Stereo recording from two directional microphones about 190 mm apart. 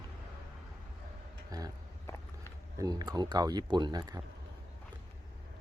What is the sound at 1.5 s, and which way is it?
Speech, 20° right (ahead or behind).